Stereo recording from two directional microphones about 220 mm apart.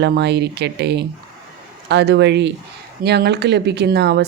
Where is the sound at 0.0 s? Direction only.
50° right (ahead or behind).